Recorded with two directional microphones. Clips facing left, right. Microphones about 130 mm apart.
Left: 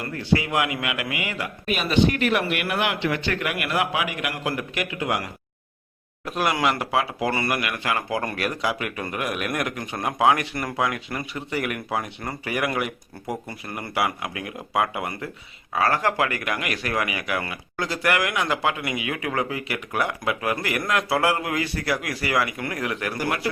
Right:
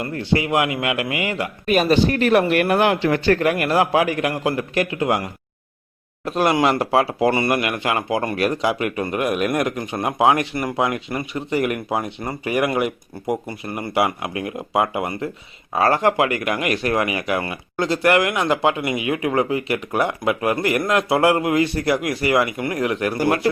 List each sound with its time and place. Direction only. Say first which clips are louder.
0.1 s speech: right 2 dB; 25° right (ahead or behind)
1.6 s a man's voice: right 4 dB; 45° right (ahead or behind)
6.2 s speech: right 5 dB; 30° right (ahead or behind)